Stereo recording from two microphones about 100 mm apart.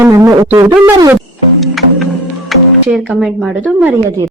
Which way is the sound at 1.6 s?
Centre (ahead or behind).